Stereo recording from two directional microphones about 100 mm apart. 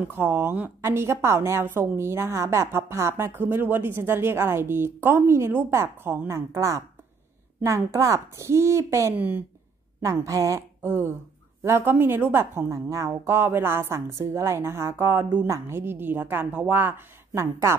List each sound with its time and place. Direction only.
0.0 s a woman's voice: 20° right (ahead or behind)
9.1 s speech: 20° right (ahead or behind)
10.0 s a woman's voice: 30° right (ahead or behind)